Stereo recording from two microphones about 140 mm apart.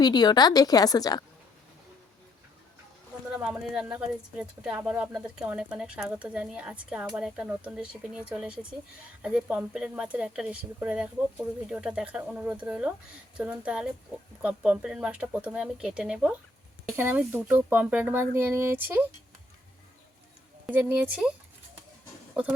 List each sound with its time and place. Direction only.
0.0 s a woman's voice: 30° left (ahead or behind)
3.4 s speech: 5° right (ahead or behind)
20.7 s speech: 10° right (ahead or behind)